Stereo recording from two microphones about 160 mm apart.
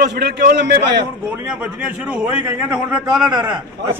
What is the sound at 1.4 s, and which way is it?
A man's voice, 10° right (ahead or behind).